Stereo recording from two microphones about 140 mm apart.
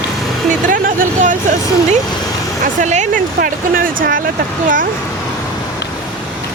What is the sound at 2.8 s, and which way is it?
Speech, 60° right (ahead or behind).